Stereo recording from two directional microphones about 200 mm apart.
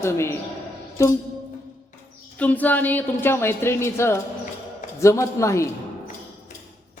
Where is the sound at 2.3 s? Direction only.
10° left (ahead or behind).